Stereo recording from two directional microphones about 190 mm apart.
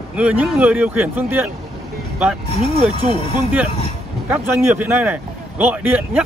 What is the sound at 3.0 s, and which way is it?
Speech, 35° right (ahead or behind).